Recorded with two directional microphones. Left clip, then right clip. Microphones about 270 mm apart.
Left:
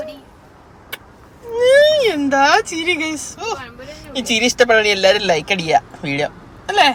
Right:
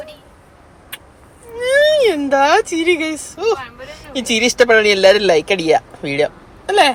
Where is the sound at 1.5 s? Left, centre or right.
Centre.